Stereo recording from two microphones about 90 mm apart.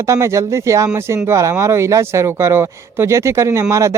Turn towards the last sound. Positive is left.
turn(degrees=-35)  # may be behind; listen again after turning